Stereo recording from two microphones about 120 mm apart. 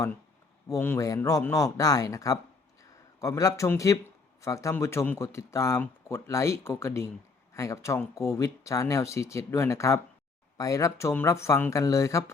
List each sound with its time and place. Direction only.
0.8 s speech: 20° left (ahead or behind)